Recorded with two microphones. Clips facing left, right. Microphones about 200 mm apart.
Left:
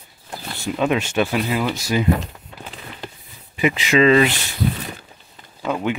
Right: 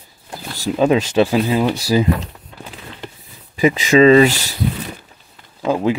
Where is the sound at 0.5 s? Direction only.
35° right (ahead or behind).